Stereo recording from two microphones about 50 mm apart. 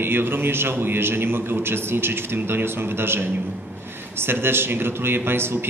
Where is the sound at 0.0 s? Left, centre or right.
Right.